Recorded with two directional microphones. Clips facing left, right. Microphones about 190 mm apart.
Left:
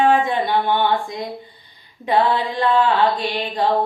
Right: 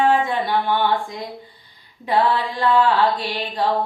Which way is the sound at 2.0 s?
20° left (ahead or behind).